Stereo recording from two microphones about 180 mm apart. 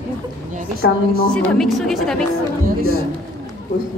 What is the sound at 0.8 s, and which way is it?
Speech, 90° left.